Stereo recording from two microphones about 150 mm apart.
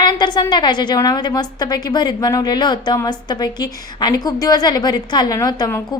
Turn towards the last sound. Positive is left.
turn(degrees=25)  # may be behind; listen again after turning